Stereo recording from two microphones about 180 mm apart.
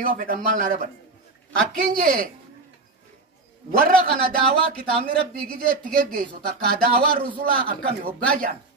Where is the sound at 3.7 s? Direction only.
50° right (ahead or behind).